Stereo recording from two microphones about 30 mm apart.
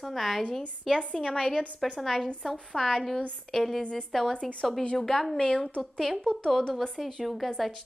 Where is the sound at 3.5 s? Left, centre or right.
Centre.